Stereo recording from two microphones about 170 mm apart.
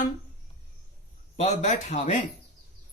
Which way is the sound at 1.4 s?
40° left (ahead or behind).